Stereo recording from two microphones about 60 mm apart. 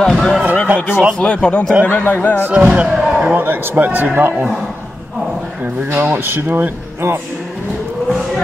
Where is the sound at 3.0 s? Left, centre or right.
Centre.